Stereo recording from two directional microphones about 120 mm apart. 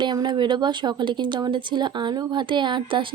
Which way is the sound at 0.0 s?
40° right (ahead or behind).